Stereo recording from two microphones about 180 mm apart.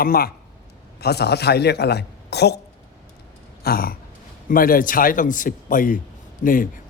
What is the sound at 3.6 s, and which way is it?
A woman's voice, 55° left (ahead or behind).